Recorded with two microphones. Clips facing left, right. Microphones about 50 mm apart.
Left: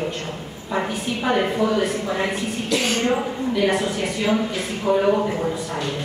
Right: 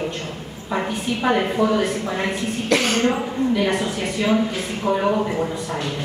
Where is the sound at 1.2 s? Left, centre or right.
Centre.